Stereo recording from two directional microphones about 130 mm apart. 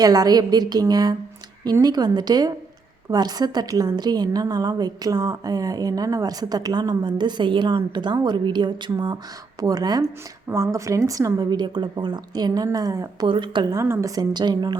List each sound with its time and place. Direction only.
0.0 s a woman's voice: 30° right (ahead or behind)
13.7 s a woman's voice: 20° right (ahead or behind)